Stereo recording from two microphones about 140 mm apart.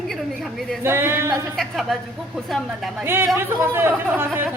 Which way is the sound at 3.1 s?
15° right (ahead or behind).